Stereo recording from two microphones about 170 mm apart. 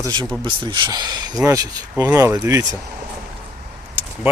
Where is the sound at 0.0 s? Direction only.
25° right (ahead or behind).